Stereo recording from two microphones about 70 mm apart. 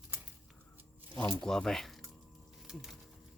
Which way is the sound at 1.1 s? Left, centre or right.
Left.